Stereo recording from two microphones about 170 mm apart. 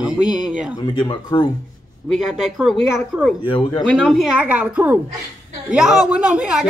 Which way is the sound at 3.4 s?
30° left (ahead or behind).